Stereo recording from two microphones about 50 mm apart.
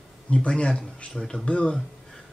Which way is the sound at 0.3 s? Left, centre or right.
Left.